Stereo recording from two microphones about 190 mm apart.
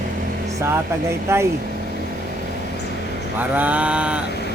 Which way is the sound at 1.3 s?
15° right (ahead or behind).